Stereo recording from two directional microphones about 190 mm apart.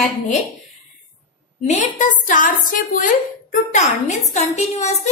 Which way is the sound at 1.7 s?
40° left (ahead or behind).